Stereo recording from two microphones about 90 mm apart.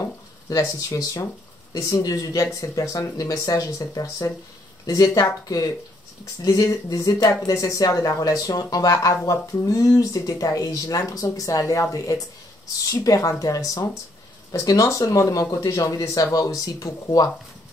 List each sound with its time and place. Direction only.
0.5 s speech: 40° left (ahead or behind)
13.0 s speech: 40° left (ahead or behind)